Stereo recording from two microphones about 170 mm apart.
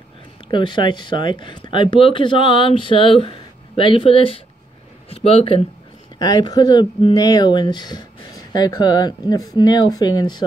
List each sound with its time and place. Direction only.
0.5 s speech: 30° left (ahead or behind)
6.1 s speech: 25° left (ahead or behind)